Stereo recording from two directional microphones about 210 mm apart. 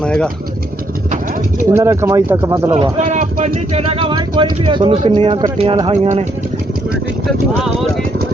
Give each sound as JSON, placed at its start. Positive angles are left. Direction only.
{"t": 0.0, "sound": "vehicle", "side_deg": 5}
{"t": 1.7, "sound": "speech", "side_deg": -15}
{"t": 3.0, "sound": "speech", "side_deg": -35}